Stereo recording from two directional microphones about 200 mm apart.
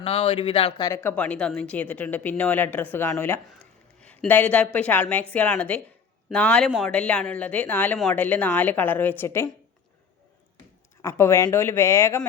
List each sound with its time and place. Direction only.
0.0 s speech: 30° left (ahead or behind); by 9.5 s 10° left (ahead or behind)
11.0 s speech: 15° left (ahead or behind)